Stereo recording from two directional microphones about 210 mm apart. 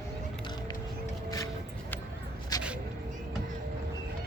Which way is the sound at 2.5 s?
20° left (ahead or behind).